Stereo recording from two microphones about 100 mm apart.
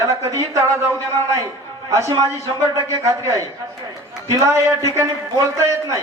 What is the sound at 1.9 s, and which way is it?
A man's voice, 30° right (ahead or behind).